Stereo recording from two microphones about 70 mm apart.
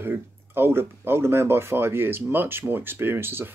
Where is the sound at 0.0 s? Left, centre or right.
Right.